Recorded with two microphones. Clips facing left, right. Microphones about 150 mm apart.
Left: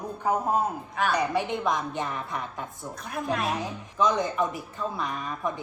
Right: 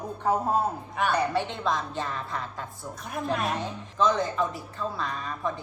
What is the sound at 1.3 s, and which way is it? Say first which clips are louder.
Speech: left 1 dB; 15° left (ahead or behind).